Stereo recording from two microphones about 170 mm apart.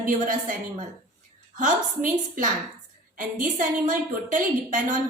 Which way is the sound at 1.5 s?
50° right (ahead or behind).